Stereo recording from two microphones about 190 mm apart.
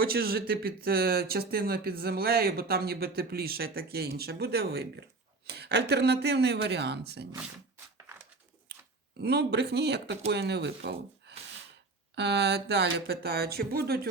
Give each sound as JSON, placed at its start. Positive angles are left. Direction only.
{"t": 0.0, "sound": "speech", "side_deg": -55}
{"t": 9.2, "sound": "speech", "side_deg": -60}